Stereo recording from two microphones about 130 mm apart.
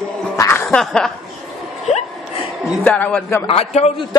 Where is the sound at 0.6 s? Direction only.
5° left (ahead or behind).